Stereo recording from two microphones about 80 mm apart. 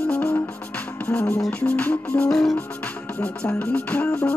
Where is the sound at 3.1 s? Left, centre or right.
Centre.